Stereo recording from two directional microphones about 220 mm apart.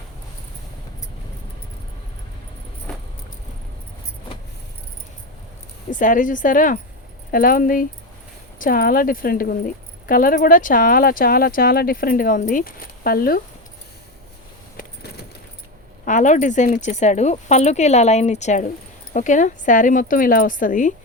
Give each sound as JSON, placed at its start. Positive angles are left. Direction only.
{"t": 5.9, "sound": "speech", "side_deg": 35}
{"t": 16.0, "sound": "speech", "side_deg": 35}